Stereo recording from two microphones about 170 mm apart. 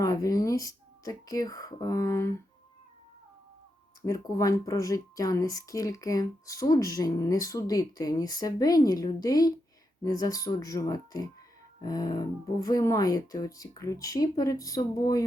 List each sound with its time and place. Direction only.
0.0 s speech: 20° left (ahead or behind)
4.0 s speech: 20° left (ahead or behind)